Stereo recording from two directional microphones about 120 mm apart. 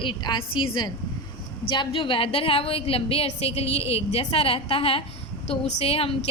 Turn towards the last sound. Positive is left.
turn(degrees=55)  # may be behind; listen again after turning